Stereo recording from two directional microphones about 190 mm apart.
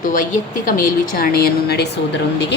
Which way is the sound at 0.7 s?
50° left (ahead or behind).